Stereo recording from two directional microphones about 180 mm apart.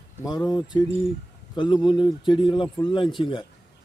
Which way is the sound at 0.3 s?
25° left (ahead or behind).